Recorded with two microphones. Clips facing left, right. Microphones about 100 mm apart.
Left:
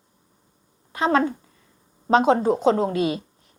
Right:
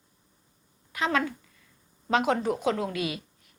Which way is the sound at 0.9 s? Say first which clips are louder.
Left 7 dB; 30° left (ahead or behind).